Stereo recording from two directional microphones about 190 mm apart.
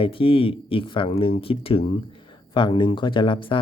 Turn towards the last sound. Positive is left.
turn(degrees=25)  # may be behind; listen again after turning